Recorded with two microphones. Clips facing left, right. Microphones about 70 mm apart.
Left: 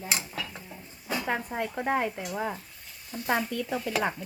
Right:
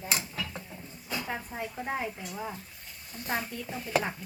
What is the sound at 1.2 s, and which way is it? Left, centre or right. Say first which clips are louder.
Speech: left 6 dB; left.